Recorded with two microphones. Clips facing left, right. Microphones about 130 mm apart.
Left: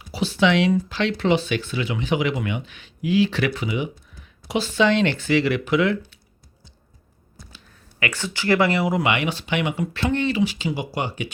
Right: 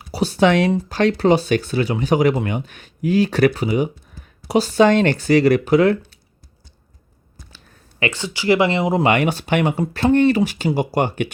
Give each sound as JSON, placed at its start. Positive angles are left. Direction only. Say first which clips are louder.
{"t": 0.0, "sound": "speech", "louder": "right 4 dB", "side_deg": -45}
{"t": 8.1, "sound": "speech", "louder": "right 3 dB", "side_deg": -15}
{"t": 9.0, "sound": "speech", "louder": "right 6 dB", "side_deg": -45}